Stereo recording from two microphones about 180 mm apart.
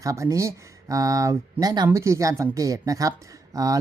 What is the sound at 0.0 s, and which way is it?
Speech, 20° right (ahead or behind).